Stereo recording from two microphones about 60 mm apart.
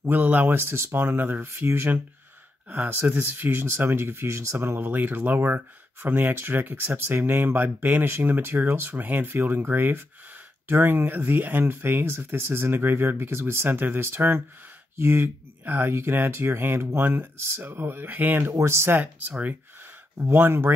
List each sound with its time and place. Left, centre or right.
0.0 s speech: right
4.6 s speech: right
18.4 s speech: right
20.2 s speech: right